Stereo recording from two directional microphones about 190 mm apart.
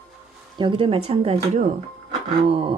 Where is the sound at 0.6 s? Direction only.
25° right (ahead or behind).